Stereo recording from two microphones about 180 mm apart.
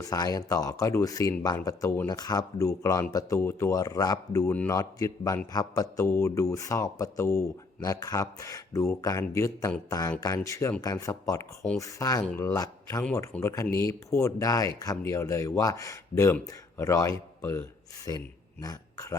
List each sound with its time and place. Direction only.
0.0 s speech: 20° left (ahead or behind)
12.3 s speech: 5° left (ahead or behind)
12.5 s speech: 20° left (ahead or behind)